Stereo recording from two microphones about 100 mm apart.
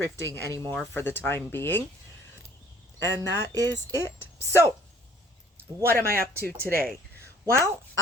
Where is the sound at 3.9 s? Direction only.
25° left (ahead or behind).